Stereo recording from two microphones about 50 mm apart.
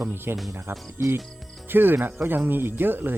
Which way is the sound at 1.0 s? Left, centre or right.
Right.